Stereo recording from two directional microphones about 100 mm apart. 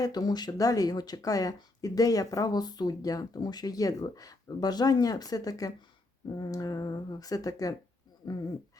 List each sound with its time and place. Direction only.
0.0 s speech: 40° left (ahead or behind)